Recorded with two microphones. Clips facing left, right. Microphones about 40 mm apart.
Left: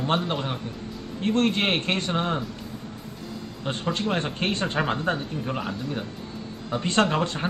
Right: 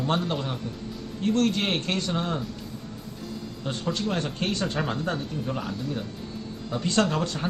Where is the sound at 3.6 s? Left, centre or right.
Left.